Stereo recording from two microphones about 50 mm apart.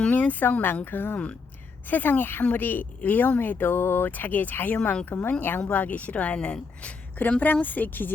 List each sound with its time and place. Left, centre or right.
0.1 s speech: left
1.1 s speech: left
1.9 s speech: left
4.8 s speech: left
5.0 s speech: left